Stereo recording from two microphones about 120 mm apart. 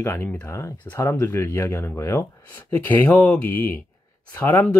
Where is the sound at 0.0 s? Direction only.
20° left (ahead or behind).